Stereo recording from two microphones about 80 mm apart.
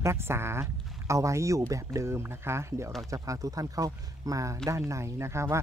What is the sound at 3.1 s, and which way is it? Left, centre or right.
Speech, right.